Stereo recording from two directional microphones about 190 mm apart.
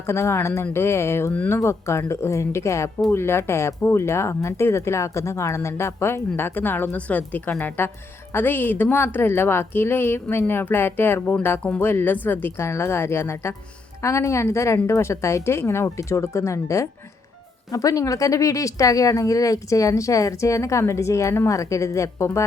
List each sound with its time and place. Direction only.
0.1 s a woman's voice: 15° left (ahead or behind)